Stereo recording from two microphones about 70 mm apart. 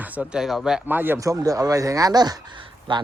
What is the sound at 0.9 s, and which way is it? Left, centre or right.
Speech, right.